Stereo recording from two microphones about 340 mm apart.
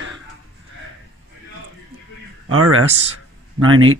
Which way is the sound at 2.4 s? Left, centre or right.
Right.